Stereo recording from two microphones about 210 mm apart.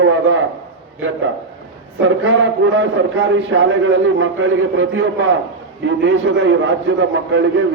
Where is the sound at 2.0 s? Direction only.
65° right (ahead or behind).